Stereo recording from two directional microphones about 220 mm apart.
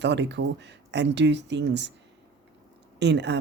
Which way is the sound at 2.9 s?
50° right (ahead or behind).